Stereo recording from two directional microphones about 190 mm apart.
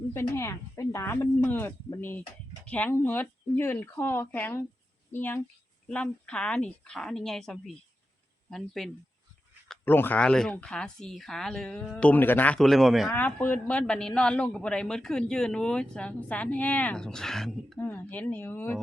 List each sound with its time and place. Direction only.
0.3 s speech: 15° left (ahead or behind)